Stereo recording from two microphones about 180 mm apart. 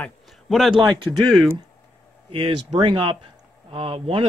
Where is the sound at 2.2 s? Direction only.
30° right (ahead or behind).